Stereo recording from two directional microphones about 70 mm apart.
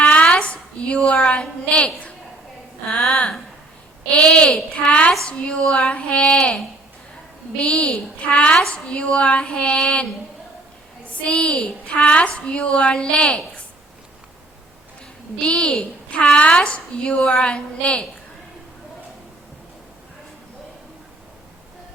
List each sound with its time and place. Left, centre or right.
0.0 s a sound: centre
0.9 s a woman's voice: centre
3.1 s a woman's voice: centre
7.6 s a woman's voice: centre
11.3 s a woman's voice: centre
15.4 s a woman's voice: centre